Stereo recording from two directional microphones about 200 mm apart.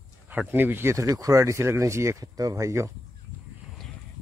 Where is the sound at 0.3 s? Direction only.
10° right (ahead or behind).